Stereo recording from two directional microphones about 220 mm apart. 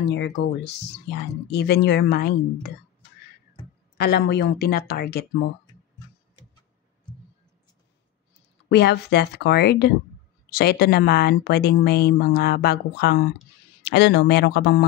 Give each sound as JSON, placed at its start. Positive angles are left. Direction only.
{"t": 0.1, "sound": "speech", "side_deg": 50}
{"t": 4.0, "sound": "speech", "side_deg": 45}
{"t": 8.6, "sound": "speech", "side_deg": 50}